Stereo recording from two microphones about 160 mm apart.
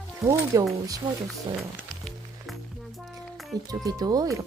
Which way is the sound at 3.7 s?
25° right (ahead or behind).